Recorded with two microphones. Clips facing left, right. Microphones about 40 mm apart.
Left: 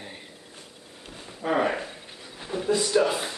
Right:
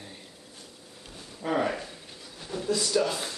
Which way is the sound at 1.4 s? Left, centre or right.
Centre.